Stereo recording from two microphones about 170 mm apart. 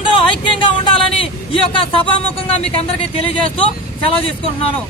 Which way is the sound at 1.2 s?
30° left (ahead or behind).